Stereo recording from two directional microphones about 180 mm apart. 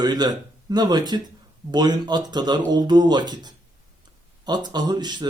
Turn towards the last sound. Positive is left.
turn(degrees=-25)  # may be behind; listen again after turning